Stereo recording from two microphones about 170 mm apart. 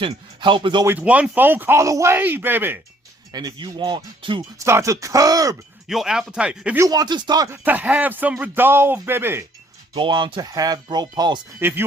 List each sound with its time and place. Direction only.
0.0 s speech: 30° right (ahead or behind)
0.9 s speech: 10° right (ahead or behind)
3.3 s speech: 25° right (ahead or behind)
4.5 s speech: 15° right (ahead or behind)
5.9 s speech: centre (ahead or behind)
6.8 s speech: 25° right (ahead or behind)
9.9 s speech: 30° right (ahead or behind)